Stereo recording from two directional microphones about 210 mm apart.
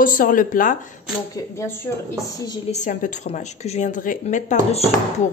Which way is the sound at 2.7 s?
35° left (ahead or behind).